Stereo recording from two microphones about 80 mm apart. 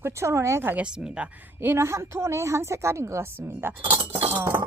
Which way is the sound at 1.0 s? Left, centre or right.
Centre.